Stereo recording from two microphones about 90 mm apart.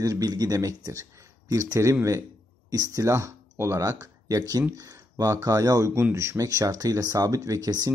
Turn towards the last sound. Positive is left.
turn(degrees=-45)  # may be behind; listen again after turning